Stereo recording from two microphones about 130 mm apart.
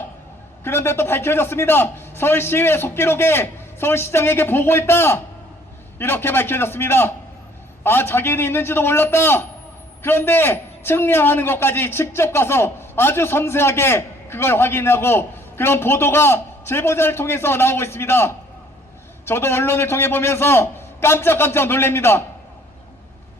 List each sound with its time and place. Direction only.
0.6 s a man's voice: 20° left (ahead or behind)